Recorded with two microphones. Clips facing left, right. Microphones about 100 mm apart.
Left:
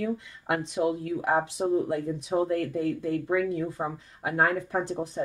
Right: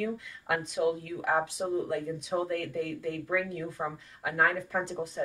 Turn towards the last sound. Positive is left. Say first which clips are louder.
# left 3 dB
turn(degrees=30)  # may be behind; listen again after turning